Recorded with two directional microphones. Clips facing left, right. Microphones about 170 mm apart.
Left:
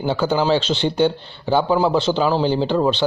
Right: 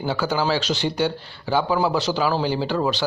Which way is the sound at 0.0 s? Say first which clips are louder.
Left 4 dB; 25° left (ahead or behind).